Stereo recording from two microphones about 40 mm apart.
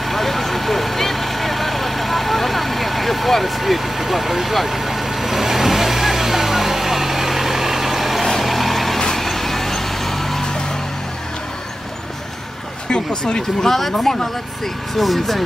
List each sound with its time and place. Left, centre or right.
0.0 s vehicle: centre
12.9 s speech: left
13.7 s speech: centre